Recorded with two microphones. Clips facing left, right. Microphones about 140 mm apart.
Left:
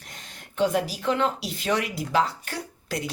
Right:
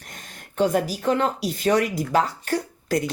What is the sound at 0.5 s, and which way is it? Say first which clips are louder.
Speech: right 3 dB; 45° right (ahead or behind).